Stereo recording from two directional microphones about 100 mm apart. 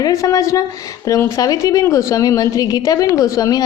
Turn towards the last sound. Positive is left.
turn(degrees=35)  # may be behind; listen again after turning